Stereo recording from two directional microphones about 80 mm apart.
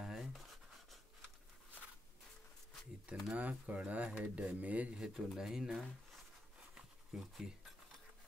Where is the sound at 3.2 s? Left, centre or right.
Centre.